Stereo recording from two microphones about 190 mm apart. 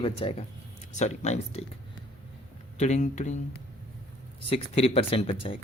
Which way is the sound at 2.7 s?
40° left (ahead or behind).